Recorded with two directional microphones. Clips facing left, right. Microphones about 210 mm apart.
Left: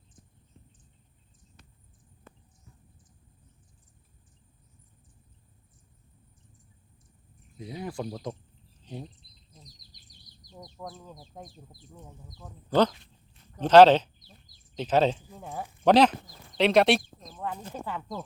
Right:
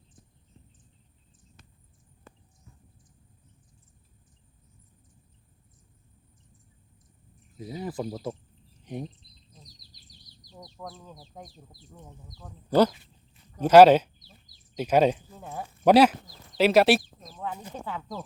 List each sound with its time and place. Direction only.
7.6 s speech: 5° right (ahead or behind)
8.8 s cricket: 15° right (ahead or behind)
10.5 s bird: centre (ahead or behind)
12.7 s speech: 5° right (ahead or behind)
15.4 s speech: centre (ahead or behind)
16.6 s chicken: 5° right (ahead or behind)
17.5 s speech: 10° right (ahead or behind)
17.8 s speech: centre (ahead or behind)